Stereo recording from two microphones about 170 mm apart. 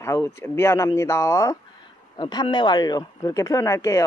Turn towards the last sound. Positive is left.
turn(degrees=20)  # may be behind; listen again after turning